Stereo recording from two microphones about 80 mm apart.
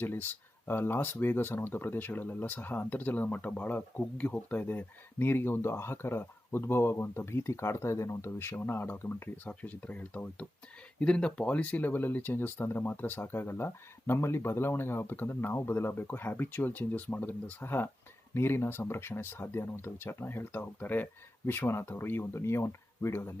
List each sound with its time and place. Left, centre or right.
0.0 s speech: left